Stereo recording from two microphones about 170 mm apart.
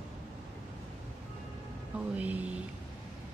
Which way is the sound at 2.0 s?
10° right (ahead or behind).